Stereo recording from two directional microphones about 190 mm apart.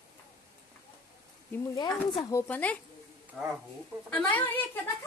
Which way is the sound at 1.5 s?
20° left (ahead or behind).